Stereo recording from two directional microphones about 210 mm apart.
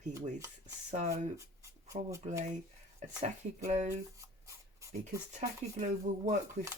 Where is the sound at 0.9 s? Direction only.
35° right (ahead or behind).